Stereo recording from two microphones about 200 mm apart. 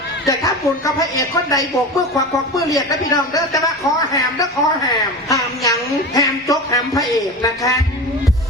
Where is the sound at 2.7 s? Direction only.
20° left (ahead or behind).